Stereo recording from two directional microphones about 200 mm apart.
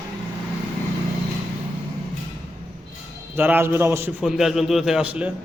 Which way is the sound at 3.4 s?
10° right (ahead or behind).